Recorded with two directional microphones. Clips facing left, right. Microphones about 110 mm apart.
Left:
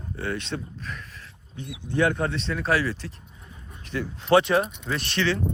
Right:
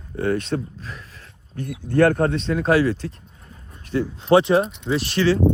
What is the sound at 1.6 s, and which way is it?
Speech, 50° right (ahead or behind).